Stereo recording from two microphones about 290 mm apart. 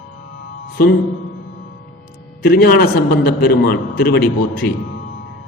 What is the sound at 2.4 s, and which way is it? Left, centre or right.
A man's voice, left.